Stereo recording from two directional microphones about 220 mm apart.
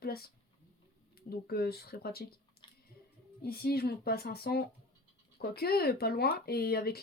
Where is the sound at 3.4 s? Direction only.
45° left (ahead or behind).